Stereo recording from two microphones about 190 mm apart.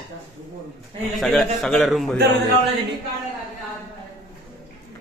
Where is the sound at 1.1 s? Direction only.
Centre (ahead or behind).